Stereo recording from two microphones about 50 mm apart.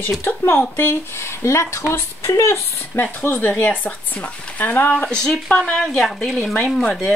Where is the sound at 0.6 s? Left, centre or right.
Left.